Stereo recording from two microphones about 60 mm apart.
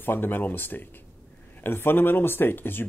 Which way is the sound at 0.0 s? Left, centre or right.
Left.